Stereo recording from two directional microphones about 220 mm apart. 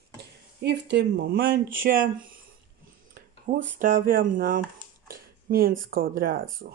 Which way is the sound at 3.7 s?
40° right (ahead or behind).